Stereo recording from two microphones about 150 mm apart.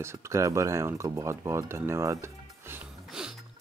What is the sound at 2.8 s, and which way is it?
Music, 5° right (ahead or behind).